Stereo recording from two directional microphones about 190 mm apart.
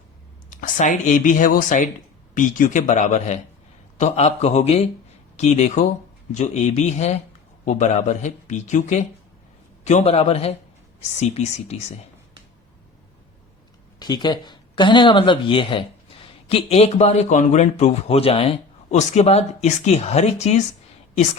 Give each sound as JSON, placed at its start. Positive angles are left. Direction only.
{"t": 0.5, "sound": "speech", "side_deg": 40}
{"t": 14.0, "sound": "speech", "side_deg": 20}